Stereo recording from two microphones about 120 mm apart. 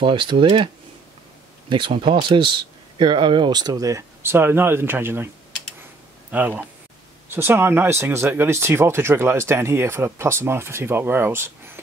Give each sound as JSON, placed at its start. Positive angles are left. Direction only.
{"t": 0.0, "sound": "speech", "side_deg": -45}
{"t": 1.7, "sound": "speech", "side_deg": -45}
{"t": 6.3, "sound": "speech", "side_deg": -15}